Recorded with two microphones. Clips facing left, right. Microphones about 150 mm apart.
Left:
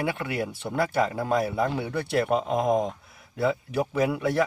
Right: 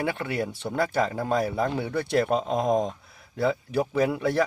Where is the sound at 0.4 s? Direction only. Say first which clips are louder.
Even; 10° left (ahead or behind).